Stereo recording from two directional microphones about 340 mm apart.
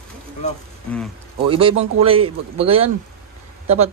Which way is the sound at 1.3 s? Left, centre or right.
Centre.